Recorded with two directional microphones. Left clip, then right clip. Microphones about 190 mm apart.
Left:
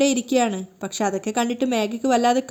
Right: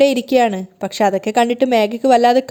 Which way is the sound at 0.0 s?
30° right (ahead or behind).